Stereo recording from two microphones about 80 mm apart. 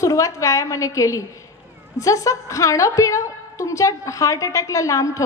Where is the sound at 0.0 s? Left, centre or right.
Left.